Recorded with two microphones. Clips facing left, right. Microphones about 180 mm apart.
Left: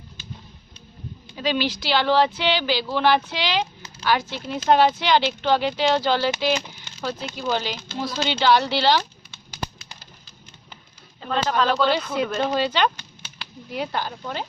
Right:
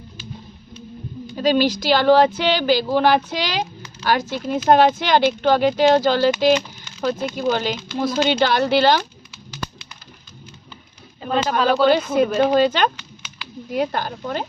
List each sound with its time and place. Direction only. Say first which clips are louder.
1.4 s speech: right 7 dB; 45° right (ahead or behind)
11.2 s speech: right 3 dB; 15° right (ahead or behind)
12.4 s speech: right 4 dB; 50° right (ahead or behind)